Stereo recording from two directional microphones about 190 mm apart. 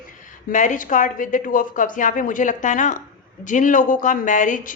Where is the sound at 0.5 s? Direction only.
40° left (ahead or behind).